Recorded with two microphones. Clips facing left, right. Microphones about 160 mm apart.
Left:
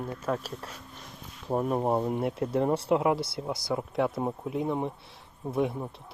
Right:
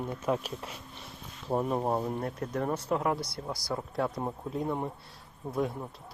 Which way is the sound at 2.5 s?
25° left (ahead or behind).